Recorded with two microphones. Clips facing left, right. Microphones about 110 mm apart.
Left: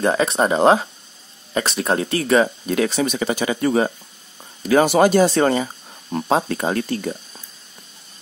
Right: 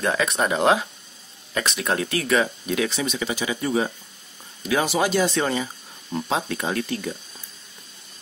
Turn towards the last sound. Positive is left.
turn(degrees=40)  # may be behind; listen again after turning